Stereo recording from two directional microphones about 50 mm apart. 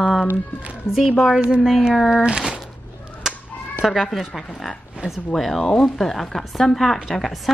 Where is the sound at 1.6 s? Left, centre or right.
Centre.